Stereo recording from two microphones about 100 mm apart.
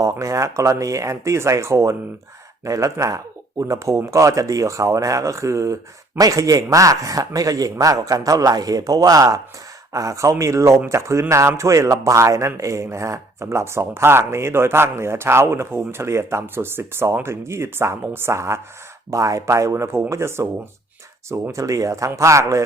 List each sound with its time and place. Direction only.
0.0 s a man's voice: 30° right (ahead or behind)